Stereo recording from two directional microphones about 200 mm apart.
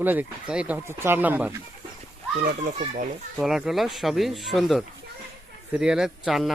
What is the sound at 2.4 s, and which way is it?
Speech, 50° right (ahead or behind).